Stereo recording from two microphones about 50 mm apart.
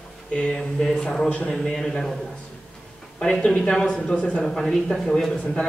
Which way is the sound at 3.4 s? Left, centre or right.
Centre.